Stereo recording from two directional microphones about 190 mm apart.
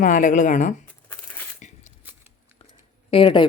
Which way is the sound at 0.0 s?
40° left (ahead or behind).